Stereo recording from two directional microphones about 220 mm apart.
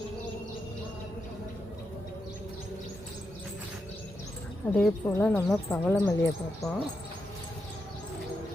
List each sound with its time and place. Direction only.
4.7 s speech: 10° left (ahead or behind)